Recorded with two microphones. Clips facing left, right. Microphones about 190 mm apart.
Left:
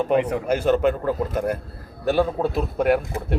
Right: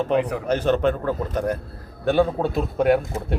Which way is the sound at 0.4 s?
10° left (ahead or behind).